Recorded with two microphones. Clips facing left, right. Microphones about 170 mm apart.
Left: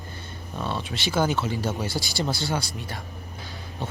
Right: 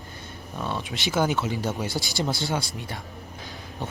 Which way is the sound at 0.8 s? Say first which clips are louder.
Even; 20° right (ahead or behind).